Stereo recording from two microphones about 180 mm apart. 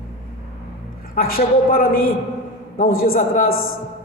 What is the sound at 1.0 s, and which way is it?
A woman's voice, 55° left (ahead or behind).